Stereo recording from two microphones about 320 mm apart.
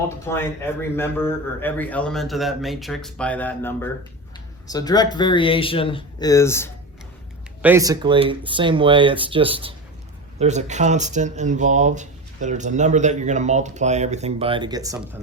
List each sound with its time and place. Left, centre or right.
0.3 s speech: centre
7.6 s speech: centre